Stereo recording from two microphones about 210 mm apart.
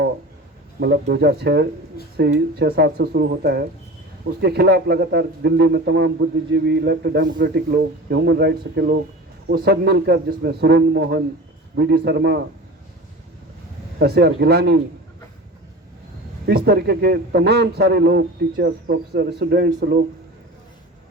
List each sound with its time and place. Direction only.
0.8 s a man's voice: 55° right (ahead or behind)
14.0 s a man's voice: 50° right (ahead or behind)
16.5 s a man's voice: 50° right (ahead or behind)